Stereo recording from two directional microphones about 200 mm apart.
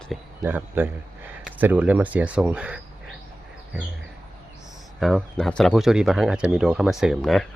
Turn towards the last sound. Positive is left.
turn(degrees=0)  # may be behind; listen again after turning